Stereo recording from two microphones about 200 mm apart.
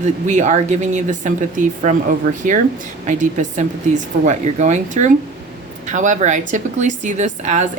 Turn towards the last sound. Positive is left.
turn(degrees=-35)  # may be behind; listen again after turning